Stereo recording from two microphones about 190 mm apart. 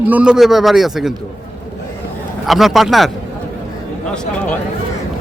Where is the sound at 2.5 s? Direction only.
Centre (ahead or behind).